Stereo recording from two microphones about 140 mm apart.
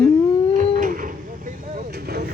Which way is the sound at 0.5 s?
70° right (ahead or behind).